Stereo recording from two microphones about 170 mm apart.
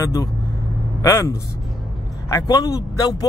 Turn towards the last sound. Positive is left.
turn(degrees=20)  # may be behind; listen again after turning